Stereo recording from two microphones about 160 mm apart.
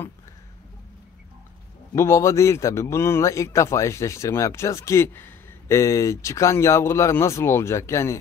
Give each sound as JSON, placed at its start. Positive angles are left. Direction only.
{"t": 2.0, "sound": "a man's voice", "side_deg": 15}